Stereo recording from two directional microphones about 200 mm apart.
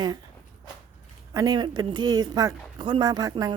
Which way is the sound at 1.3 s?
15° right (ahead or behind).